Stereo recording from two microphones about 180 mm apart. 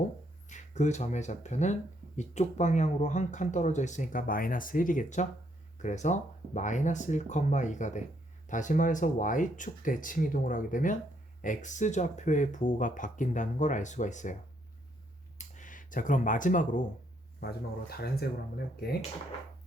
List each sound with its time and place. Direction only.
0.4 s speech: 40° left (ahead or behind)
15.4 s speech: 45° left (ahead or behind)
17.4 s speech: 60° left (ahead or behind)